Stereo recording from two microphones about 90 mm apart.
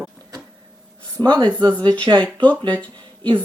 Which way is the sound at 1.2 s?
55° right (ahead or behind).